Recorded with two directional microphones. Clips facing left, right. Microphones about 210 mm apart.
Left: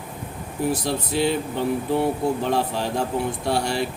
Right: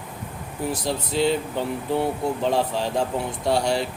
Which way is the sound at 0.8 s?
60° left (ahead or behind).